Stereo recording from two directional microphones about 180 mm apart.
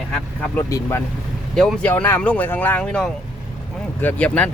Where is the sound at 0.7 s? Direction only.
20° left (ahead or behind).